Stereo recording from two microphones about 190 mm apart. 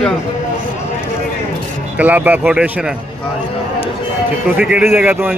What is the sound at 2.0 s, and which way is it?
Speech, 10° right (ahead or behind).